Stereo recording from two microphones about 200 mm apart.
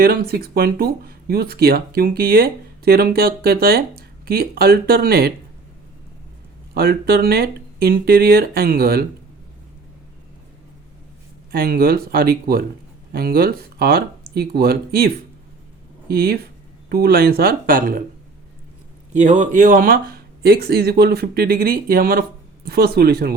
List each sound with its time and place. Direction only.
0.0 s speech: 50° right (ahead or behind)
6.7 s speech: 50° right (ahead or behind)
11.5 s speech: 50° right (ahead or behind)
19.1 s speech: 35° right (ahead or behind)